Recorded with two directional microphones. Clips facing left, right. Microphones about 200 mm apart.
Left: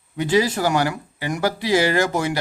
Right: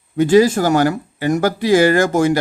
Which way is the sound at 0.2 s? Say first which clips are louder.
Right 7 dB; 45° right (ahead or behind).